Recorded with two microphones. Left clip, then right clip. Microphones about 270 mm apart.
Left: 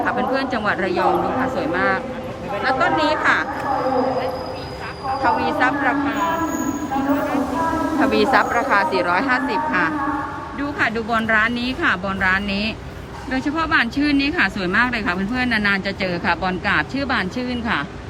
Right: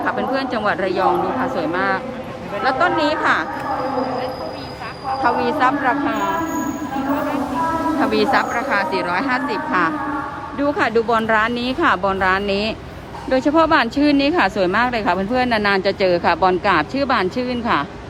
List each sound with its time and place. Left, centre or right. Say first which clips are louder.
0.0 s a woman's voice: even; centre
5.2 s a woman's voice: right 1 dB; centre
8.0 s a woman's voice: left 2 dB; centre